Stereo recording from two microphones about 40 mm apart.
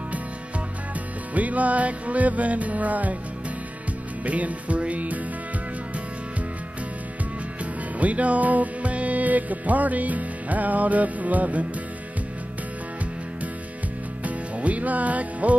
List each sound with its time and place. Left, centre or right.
1.3 s music: right
4.2 s music: right
8.0 s music: right
14.2 s music: right